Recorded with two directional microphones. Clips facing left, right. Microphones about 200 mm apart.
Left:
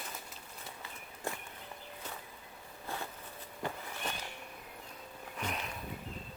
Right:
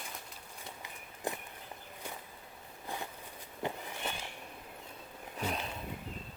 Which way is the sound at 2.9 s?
15° right (ahead or behind).